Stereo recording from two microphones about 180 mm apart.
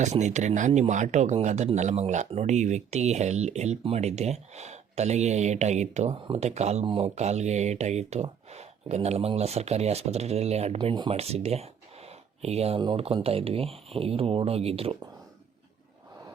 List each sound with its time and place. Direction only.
0.0 s speech: 40° right (ahead or behind)